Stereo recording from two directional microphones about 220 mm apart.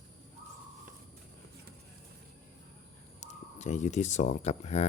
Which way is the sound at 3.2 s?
30° left (ahead or behind).